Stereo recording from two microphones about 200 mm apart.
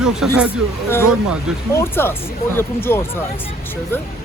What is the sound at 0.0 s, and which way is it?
Speech, 5° right (ahead or behind).